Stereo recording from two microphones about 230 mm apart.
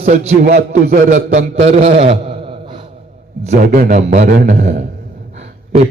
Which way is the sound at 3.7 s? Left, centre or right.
Right.